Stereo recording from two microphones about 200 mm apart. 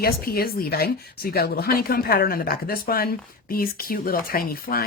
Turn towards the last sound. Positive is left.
turn(degrees=45)  # may be behind; listen again after turning